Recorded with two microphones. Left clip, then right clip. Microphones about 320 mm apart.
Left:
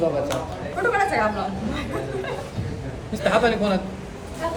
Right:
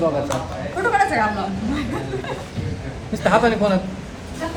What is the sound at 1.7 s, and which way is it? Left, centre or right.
Speech, centre.